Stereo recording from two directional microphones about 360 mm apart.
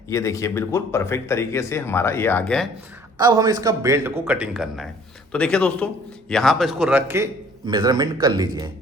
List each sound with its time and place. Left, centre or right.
0.1 s speech: centre
3.2 s a man's voice: centre